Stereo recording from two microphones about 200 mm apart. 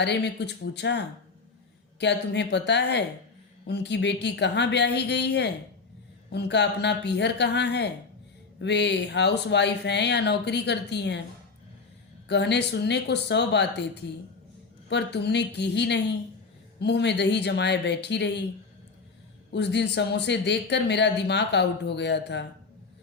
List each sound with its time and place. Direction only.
0.0 s speech: 60° left (ahead or behind)
12.3 s speech: 60° left (ahead or behind)
14.8 s speech: 60° left (ahead or behind)
19.5 s speech: 60° left (ahead or behind)